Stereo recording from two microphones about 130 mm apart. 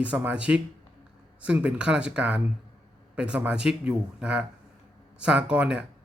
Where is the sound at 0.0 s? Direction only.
10° right (ahead or behind).